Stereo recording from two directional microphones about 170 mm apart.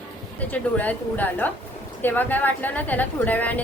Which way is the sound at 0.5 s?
10° left (ahead or behind).